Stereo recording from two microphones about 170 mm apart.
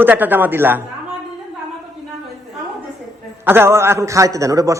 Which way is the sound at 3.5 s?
15° right (ahead or behind).